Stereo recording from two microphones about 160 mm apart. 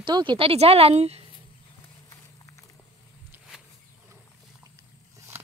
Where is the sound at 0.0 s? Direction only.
30° right (ahead or behind).